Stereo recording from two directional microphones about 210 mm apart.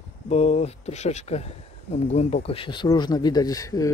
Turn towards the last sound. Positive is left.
turn(degrees=15)  # may be behind; listen again after turning